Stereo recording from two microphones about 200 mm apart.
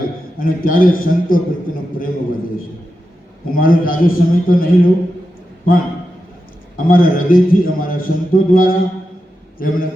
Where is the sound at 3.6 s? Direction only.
45° left (ahead or behind).